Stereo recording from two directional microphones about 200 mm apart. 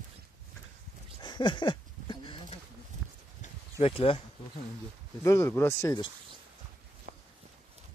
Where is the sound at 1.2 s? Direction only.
25° left (ahead or behind).